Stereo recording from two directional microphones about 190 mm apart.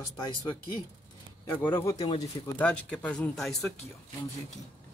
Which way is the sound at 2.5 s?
5° left (ahead or behind).